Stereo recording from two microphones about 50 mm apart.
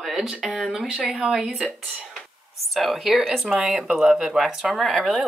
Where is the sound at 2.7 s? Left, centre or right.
Centre.